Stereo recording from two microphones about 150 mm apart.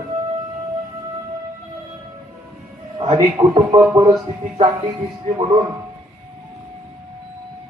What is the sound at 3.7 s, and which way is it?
Speech, 25° right (ahead or behind).